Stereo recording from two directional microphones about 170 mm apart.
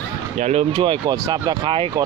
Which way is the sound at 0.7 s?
30° right (ahead or behind).